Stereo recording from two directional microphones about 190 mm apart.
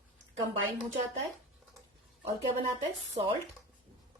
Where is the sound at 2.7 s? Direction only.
30° right (ahead or behind).